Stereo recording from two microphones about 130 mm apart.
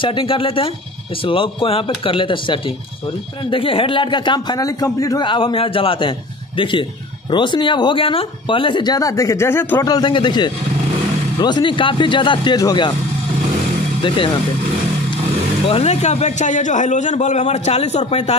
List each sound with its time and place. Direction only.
0.0 s a man's voice: 40° left (ahead or behind); by 9.8 s 15° left (ahead or behind)
9.8 s a man's voice: 35° left (ahead or behind)
14.0 s a man's voice: 40° left (ahead or behind)
15.7 s a man's voice: 50° left (ahead or behind)